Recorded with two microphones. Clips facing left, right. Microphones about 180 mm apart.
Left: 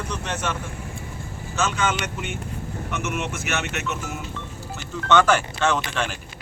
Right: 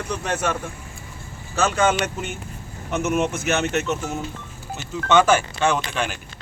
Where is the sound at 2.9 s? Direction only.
40° right (ahead or behind).